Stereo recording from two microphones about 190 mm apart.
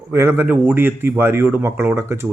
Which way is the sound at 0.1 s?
10° right (ahead or behind).